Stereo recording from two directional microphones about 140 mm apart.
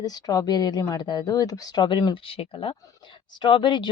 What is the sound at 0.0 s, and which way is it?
Speech, 25° left (ahead or behind).